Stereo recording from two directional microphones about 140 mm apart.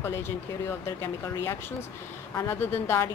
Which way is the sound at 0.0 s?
15° left (ahead or behind).